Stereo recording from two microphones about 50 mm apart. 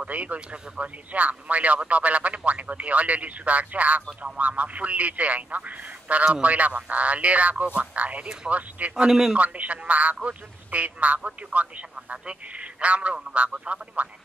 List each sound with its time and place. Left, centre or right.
0.0 s speech: right
8.9 s a man's voice: centre
9.4 s speech: right